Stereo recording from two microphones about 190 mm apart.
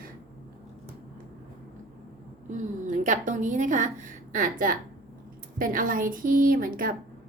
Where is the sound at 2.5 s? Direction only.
40° right (ahead or behind).